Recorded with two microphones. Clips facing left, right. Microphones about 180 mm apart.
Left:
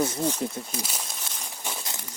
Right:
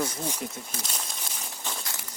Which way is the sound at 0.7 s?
10° left (ahead or behind).